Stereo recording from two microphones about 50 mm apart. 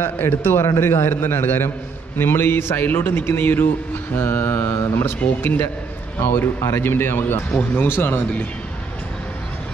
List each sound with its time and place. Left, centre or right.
0.0 s a man's voice: left
5.4 s a man's voice: left